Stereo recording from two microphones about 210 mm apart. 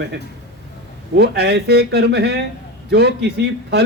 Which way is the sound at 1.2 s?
50° right (ahead or behind).